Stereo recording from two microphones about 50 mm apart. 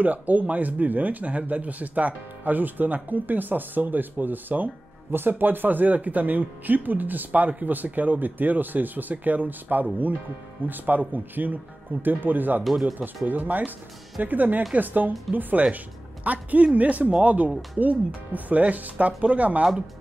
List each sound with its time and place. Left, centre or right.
0.0 s speech: right